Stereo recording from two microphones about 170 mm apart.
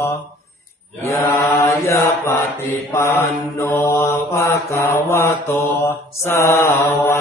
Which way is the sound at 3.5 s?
15° left (ahead or behind).